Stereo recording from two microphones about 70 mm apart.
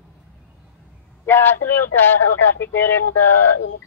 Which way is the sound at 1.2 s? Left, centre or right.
Left.